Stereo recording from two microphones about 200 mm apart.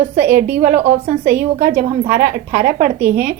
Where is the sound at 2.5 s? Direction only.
35° right (ahead or behind).